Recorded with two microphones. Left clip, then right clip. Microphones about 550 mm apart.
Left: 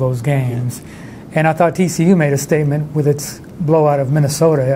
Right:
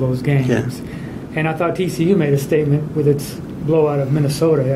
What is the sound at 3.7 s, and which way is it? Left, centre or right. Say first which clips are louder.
Speech: left 3 dB; left.